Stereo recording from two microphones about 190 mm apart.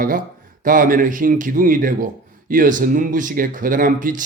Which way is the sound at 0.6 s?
45° right (ahead or behind).